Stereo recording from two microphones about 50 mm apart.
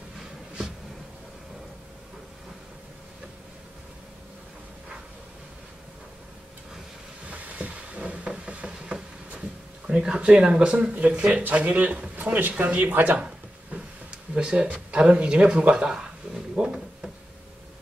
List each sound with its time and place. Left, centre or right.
7.2 s a sound: right
9.8 s speech: centre; by 13.2 s right
14.3 s speech: centre
16.5 s drawer open or close: centre